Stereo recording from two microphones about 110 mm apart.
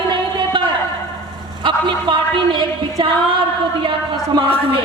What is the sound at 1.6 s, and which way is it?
A woman's voice, 45° right (ahead or behind).